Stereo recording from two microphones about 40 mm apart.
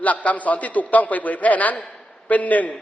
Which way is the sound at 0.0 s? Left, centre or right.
Left.